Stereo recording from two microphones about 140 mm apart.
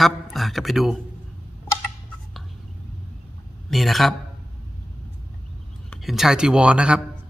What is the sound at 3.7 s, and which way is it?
Speech, centre (ahead or behind).